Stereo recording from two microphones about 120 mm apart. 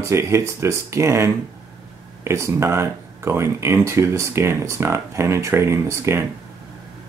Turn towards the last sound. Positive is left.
turn(degrees=-20)  # may be behind; listen again after turning